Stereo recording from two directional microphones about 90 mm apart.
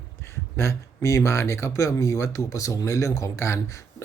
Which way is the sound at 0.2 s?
30° left (ahead or behind).